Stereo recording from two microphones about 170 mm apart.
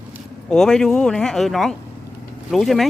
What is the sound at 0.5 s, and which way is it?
Speech, 5° left (ahead or behind).